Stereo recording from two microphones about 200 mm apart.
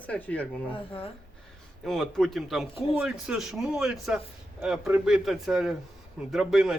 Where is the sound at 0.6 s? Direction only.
25° left (ahead or behind).